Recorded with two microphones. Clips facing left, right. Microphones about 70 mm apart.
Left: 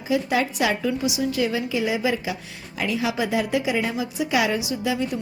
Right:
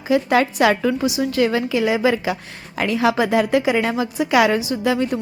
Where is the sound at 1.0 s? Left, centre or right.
Right.